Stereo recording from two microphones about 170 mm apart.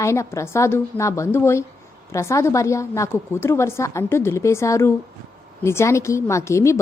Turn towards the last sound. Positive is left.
turn(degrees=15)  # may be behind; listen again after turning